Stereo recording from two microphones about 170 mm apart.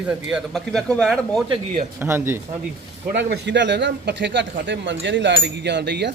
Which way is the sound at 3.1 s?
85° right.